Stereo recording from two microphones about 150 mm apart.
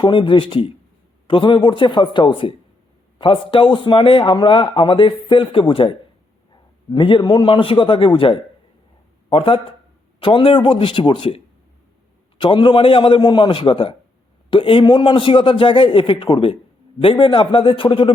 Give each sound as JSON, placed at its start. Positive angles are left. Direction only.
{"t": 0.0, "sound": "a man's voice", "side_deg": 35}
{"t": 12.4, "sound": "speech", "side_deg": 30}